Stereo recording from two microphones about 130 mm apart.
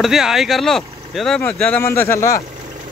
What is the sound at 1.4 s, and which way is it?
Speech, 15° left (ahead or behind).